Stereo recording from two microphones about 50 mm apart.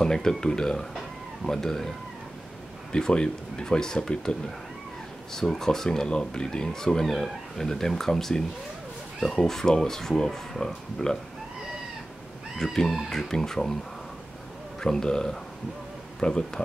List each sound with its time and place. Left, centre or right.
0.0 s speech: centre
0.9 s chicken: centre
2.9 s speech: centre
12.5 s speech: centre
14.8 s speech: centre